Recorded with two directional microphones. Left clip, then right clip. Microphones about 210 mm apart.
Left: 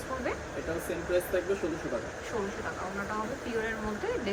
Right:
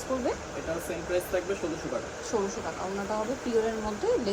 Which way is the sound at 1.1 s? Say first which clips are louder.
Left 1 dB; centre (ahead or behind).